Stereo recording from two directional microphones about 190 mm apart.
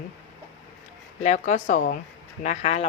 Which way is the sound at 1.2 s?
40° left (ahead or behind).